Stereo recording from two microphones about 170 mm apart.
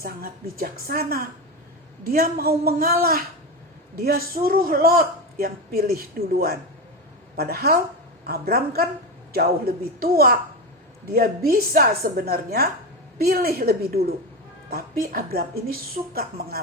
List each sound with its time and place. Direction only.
0.0 s a man's voice: 60° right (ahead or behind)